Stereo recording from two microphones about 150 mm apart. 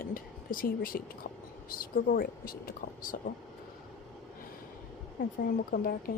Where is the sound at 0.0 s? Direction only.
70° left (ahead or behind).